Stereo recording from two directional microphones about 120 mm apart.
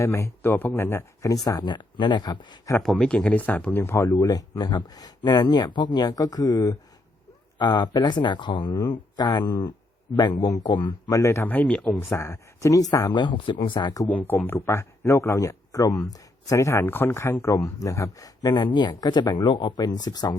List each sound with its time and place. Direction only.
0.0 s speech: 20° left (ahead or behind)
1.5 s speech: 35° left (ahead or behind)
2.8 s speech: 5° left (ahead or behind); by 11.2 s 40° left (ahead or behind)
11.2 s speech: 20° left (ahead or behind)
12.1 s speech: 25° left (ahead or behind)
14.1 s speech: 15° left (ahead or behind); by 20.3 s 35° left (ahead or behind)